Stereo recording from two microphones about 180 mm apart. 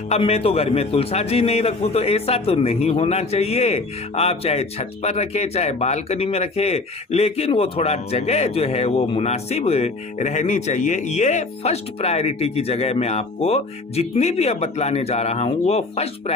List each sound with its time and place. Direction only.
0.1 s a man's voice: 35° left (ahead or behind)